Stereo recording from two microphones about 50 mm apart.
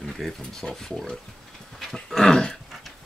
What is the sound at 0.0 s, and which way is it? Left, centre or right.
Speech, centre.